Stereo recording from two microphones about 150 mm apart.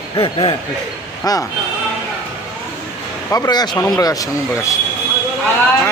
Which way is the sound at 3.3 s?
25° left (ahead or behind).